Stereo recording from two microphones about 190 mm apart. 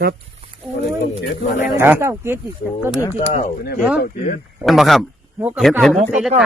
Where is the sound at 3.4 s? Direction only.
50° left (ahead or behind).